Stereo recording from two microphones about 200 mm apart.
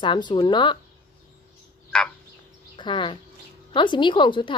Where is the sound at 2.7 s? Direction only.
25° left (ahead or behind).